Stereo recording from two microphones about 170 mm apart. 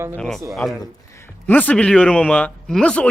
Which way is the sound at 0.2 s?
Centre (ahead or behind).